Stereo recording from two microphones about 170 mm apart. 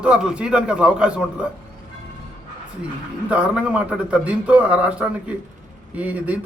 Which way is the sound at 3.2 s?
5° right (ahead or behind).